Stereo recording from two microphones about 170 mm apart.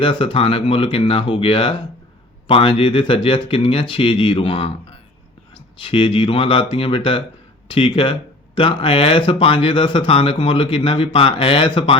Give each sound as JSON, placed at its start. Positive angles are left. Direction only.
{"t": 0.0, "sound": "speech", "side_deg": 30}